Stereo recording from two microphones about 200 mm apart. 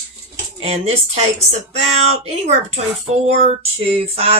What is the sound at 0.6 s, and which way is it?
Speech, 30° right (ahead or behind).